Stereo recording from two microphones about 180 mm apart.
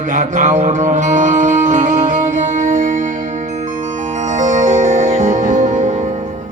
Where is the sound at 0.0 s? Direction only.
45° right (ahead or behind).